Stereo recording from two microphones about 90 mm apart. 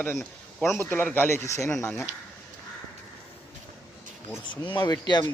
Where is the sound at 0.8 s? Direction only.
20° left (ahead or behind).